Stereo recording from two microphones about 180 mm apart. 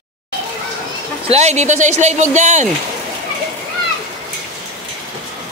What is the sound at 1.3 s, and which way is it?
Speech, 40° right (ahead or behind).